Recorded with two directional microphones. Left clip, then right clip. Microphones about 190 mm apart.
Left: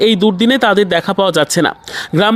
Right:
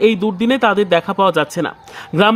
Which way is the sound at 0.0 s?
25° left (ahead or behind).